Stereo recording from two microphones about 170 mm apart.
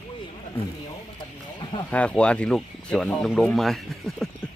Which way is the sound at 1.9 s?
5° left (ahead or behind).